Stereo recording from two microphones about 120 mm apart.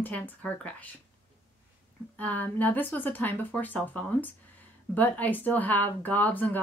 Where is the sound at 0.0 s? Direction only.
15° left (ahead or behind).